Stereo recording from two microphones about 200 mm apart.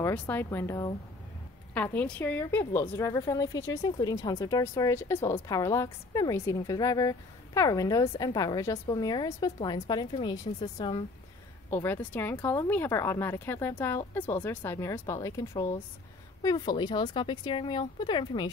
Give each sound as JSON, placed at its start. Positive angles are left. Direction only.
{"t": 0.0, "sound": "a woman's voice", "side_deg": 10}
{"t": 11.7, "sound": "a woman's voice", "side_deg": 10}